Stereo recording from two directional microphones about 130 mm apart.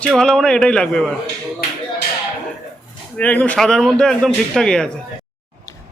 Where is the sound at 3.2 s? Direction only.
10° left (ahead or behind).